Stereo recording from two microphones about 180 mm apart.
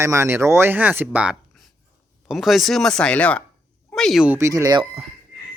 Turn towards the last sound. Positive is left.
turn(degrees=-20)  # may be behind; listen again after turning